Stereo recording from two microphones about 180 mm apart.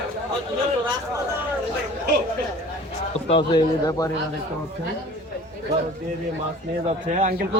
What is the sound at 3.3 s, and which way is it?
Speech, 25° left (ahead or behind).